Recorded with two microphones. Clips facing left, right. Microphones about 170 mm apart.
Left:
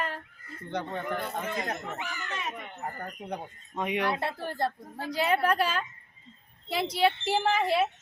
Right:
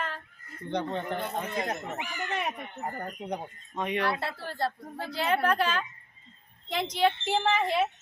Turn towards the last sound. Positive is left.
turn(degrees=5)  # may be behind; listen again after turning